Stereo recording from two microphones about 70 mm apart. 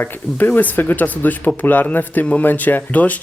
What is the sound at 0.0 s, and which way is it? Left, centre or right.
Speech, left.